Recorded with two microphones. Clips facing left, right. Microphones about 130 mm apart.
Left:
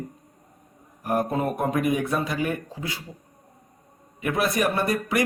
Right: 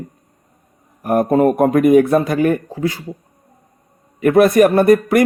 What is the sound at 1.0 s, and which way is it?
A man's voice, 55° right (ahead or behind).